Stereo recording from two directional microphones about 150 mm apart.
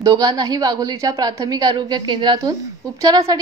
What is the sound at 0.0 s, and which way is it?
A woman's voice, 25° right (ahead or behind).